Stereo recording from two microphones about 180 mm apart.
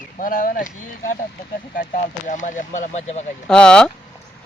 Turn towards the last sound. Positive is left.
turn(degrees=5)  # may be behind; listen again after turning